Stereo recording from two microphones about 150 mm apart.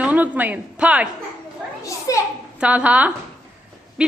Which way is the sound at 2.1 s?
20° left (ahead or behind).